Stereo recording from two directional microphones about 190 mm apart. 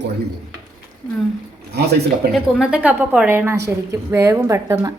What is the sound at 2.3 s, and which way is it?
A woman's voice, 5° right (ahead or behind).